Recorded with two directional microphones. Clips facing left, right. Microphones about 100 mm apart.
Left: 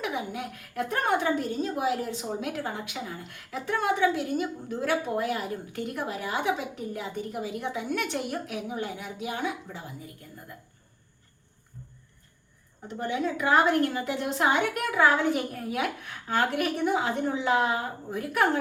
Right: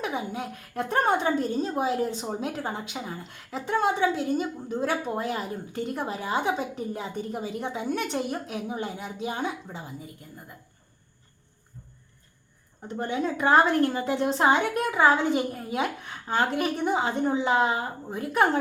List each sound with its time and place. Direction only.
0.0 s speech: 30° right (ahead or behind)
12.9 s speech: 35° right (ahead or behind)